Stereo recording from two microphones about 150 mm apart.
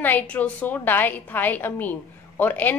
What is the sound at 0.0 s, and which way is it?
A woman's voice, 10° left (ahead or behind).